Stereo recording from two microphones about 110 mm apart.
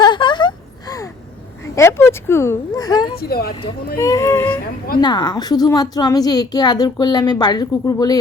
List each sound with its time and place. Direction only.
0.0 s a sound: 45° left (ahead or behind)
1.7 s speech: 25° left (ahead or behind)
2.7 s a woman's voice: 35° left (ahead or behind)
4.9 s a woman's voice: 40° left (ahead or behind)